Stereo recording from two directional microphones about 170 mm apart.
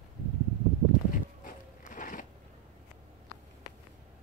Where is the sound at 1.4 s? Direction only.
50° left (ahead or behind).